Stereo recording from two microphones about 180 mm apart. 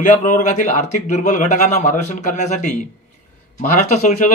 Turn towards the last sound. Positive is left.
turn(degrees=40)  # may be behind; listen again after turning